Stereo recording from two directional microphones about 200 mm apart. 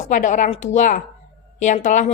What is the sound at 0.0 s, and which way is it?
A woman's voice, 40° left (ahead or behind).